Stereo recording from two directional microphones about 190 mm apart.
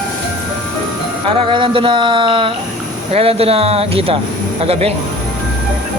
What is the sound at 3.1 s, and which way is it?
Speech, 30° right (ahead or behind).